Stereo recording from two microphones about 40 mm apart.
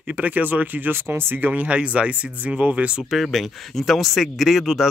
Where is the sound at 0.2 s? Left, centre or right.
Right.